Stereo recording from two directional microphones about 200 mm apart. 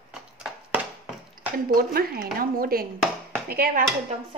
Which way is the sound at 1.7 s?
50° right (ahead or behind).